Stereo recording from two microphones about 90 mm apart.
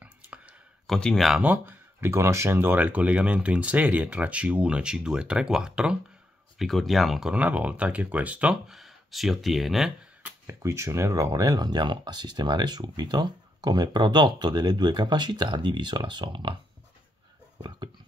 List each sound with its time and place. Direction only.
0.0 s clicking: 15° right (ahead or behind)
0.8 s speech: 5° left (ahead or behind)
1.4 s speech: 20° right (ahead or behind); by 7.3 s 5° right (ahead or behind)
7.3 s speech: 15° right (ahead or behind)
10.4 s speech: 30° right (ahead or behind); by 16.5 s 65° right (ahead or behind)
17.6 s a sound: 55° right (ahead or behind)